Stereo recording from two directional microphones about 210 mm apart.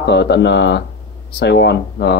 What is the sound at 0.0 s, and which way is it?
Speech, 55° left (ahead or behind).